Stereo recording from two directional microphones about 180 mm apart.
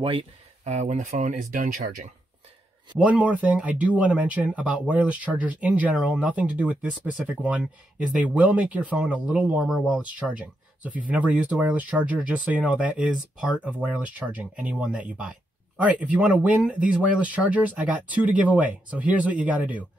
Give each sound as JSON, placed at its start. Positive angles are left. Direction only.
{"t": 0.0, "sound": "speech", "side_deg": -30}
{"t": 3.0, "sound": "speech", "side_deg": -5}